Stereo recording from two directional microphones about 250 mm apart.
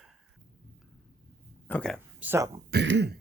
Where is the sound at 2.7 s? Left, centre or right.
Right.